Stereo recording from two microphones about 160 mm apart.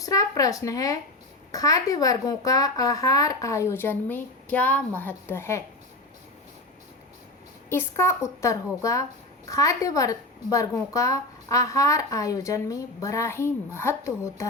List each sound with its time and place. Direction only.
0.0 s a woman's voice: 20° left (ahead or behind)
7.7 s a woman's voice: 15° left (ahead or behind)